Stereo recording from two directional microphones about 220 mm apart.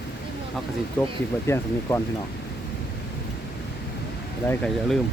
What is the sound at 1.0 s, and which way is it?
Speech, 5° left (ahead or behind).